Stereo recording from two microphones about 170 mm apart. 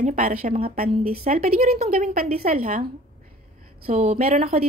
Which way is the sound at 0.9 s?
35° right (ahead or behind).